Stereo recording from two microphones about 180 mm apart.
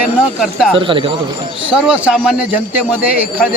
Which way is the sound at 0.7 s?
30° right (ahead or behind).